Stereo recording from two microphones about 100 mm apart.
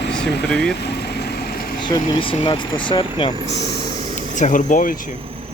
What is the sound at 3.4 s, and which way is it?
Speech, 90° right.